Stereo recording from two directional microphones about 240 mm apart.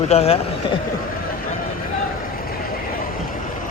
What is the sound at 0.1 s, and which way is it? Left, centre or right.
Speech, left.